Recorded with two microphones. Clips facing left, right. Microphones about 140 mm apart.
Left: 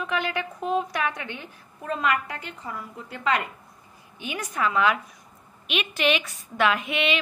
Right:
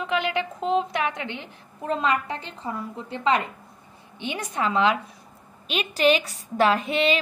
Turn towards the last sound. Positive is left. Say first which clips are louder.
# right 3 dB
turn(degrees=-35)  # may be behind; listen again after turning